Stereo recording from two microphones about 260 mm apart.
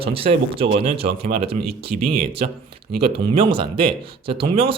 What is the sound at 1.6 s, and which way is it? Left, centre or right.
Speech, right.